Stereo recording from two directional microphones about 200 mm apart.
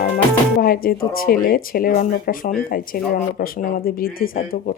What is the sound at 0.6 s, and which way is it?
Speech, 50° left (ahead or behind).